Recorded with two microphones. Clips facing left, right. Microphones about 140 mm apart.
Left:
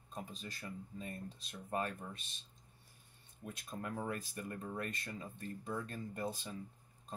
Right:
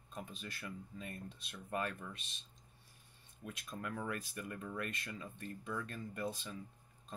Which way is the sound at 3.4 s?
45° left (ahead or behind).